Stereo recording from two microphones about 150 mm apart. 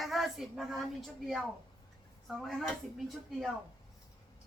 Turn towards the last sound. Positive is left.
turn(degrees=0)  # may be behind; listen again after turning